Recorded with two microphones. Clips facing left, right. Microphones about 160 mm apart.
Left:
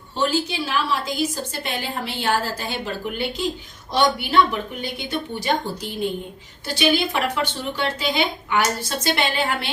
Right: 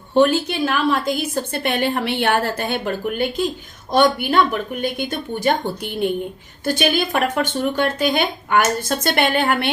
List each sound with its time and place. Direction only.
0.1 s a woman's voice: 60° right (ahead or behind)